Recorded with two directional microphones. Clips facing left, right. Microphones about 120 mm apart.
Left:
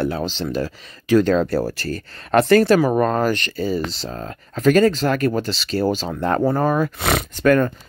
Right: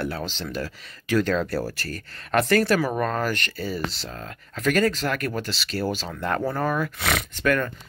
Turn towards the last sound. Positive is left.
turn(degrees=35)  # may be behind; listen again after turning